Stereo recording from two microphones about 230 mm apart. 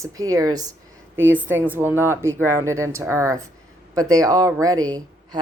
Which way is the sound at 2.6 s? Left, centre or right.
Centre.